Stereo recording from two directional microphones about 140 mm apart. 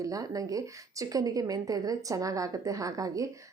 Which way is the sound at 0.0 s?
25° right (ahead or behind).